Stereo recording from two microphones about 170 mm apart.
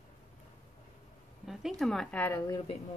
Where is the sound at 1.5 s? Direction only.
Centre (ahead or behind).